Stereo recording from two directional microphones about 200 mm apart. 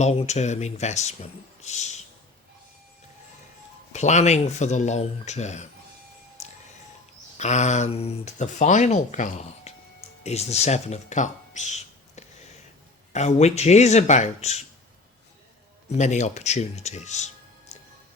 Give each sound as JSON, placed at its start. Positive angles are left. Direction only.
{"t": 0.0, "sound": "speech", "side_deg": 35}
{"t": 3.9, "sound": "speech", "side_deg": 35}
{"t": 6.4, "sound": "music", "side_deg": 35}
{"t": 7.3, "sound": "speech", "side_deg": 35}
{"t": 16.0, "sound": "speech", "side_deg": 35}